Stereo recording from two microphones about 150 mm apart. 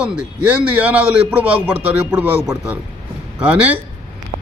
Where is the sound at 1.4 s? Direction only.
10° right (ahead or behind).